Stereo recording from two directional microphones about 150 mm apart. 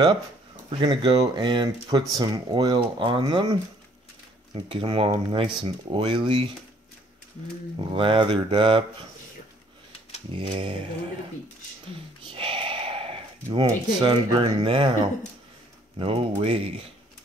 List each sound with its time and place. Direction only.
0.7 s speech: 30° right (ahead or behind)
4.6 s speech: 35° right (ahead or behind)
7.8 s speech: 35° right (ahead or behind)
10.3 s speech: 35° right (ahead or behind)
12.3 s speech: 35° right (ahead or behind)
16.0 s speech: 40° right (ahead or behind)